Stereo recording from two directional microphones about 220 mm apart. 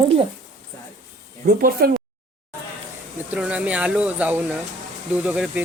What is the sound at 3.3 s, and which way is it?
Speech, 5° right (ahead or behind).